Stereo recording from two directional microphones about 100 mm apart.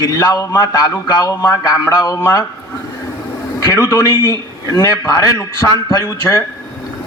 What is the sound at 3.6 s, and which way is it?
A man's voice, 35° left (ahead or behind).